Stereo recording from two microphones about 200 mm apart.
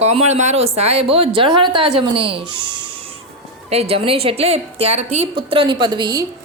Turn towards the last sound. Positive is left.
turn(degrees=-20)  # may be behind; listen again after turning